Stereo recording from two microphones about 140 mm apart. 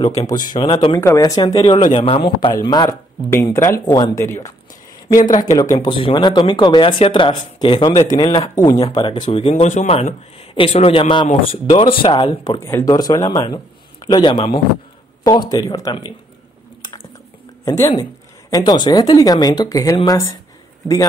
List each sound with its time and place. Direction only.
0.3 s speech: 30° left (ahead or behind)
1.0 s speech: 25° left (ahead or behind)
1.7 s a man's voice: 60° left (ahead or behind)
2.0 s speech: 35° left (ahead or behind)
3.5 s speech: 20° left (ahead or behind); by 9.9 s 55° left (ahead or behind)
10.5 s speech: 40° left (ahead or behind)
12.5 s speech: 20° left (ahead or behind)
17.6 s speech: 25° left (ahead or behind)